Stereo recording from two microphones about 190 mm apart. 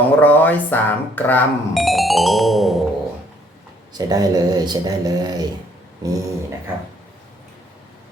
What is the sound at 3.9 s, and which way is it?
Speech, 20° right (ahead or behind).